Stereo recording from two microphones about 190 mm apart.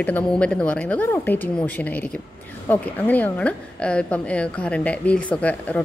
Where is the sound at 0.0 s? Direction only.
5° left (ahead or behind).